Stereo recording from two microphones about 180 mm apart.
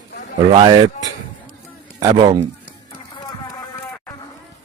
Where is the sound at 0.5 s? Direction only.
25° right (ahead or behind).